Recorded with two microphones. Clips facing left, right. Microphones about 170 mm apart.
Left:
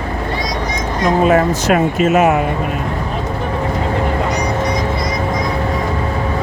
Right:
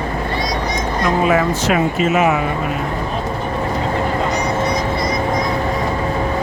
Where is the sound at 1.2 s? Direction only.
40° left (ahead or behind).